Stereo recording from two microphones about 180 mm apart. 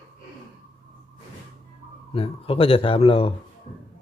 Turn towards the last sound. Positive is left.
turn(degrees=30)  # may be behind; listen again after turning